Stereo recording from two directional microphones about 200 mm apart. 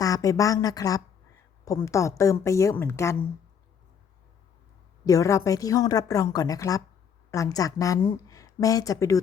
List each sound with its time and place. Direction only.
0.0 s a woman's voice: 15° left (ahead or behind)
5.0 s a woman's voice: 15° left (ahead or behind)